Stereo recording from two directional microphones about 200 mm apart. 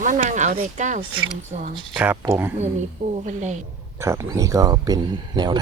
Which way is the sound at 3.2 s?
35° right (ahead or behind).